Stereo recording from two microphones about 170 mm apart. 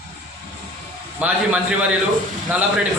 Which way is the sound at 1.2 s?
10° right (ahead or behind).